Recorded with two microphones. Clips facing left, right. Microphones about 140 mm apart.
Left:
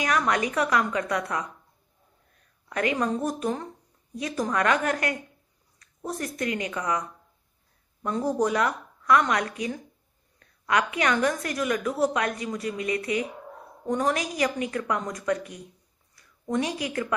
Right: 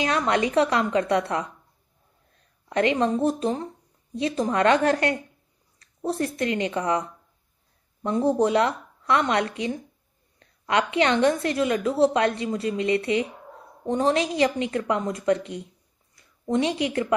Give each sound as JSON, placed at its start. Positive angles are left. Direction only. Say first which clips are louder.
{"t": 0.0, "sound": "a woman's voice", "louder": "right 2 dB", "side_deg": -25}
{"t": 2.7, "sound": "a woman's voice", "louder": "right 4 dB", "side_deg": -25}